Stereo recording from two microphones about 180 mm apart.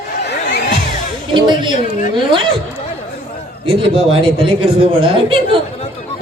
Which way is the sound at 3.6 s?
30° right (ahead or behind).